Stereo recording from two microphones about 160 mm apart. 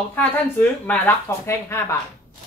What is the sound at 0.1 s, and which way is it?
Speech, 10° left (ahead or behind).